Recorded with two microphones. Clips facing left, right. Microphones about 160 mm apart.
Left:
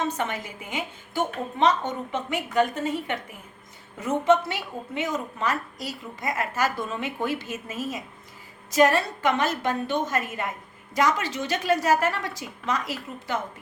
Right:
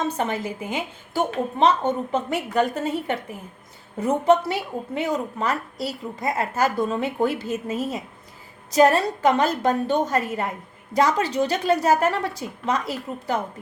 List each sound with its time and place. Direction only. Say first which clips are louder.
0.2 s a woman's voice: right 5 dB; 35° right (ahead or behind)